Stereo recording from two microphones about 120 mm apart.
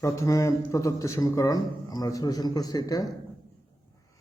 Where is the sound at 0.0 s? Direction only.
25° left (ahead or behind).